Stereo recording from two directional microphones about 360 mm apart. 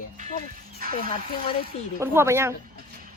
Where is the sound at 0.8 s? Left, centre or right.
Right.